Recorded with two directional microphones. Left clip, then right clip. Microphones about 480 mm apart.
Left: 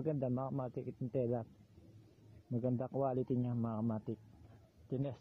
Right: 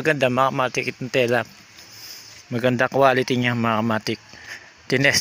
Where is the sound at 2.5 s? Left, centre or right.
Centre.